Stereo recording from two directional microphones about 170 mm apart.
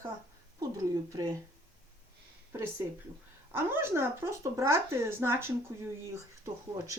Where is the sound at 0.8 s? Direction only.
20° right (ahead or behind).